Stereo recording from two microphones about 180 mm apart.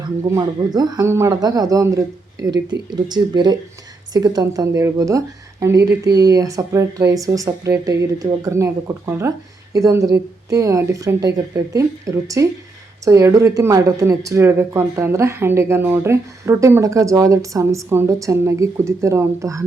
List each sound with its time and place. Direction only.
0.3 s a woman's voice: 20° right (ahead or behind)